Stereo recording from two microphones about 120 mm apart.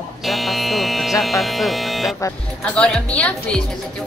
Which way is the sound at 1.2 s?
Centre (ahead or behind).